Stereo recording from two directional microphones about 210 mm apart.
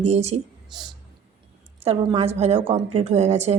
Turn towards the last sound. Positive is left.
turn(degrees=-30)  # may be behind; listen again after turning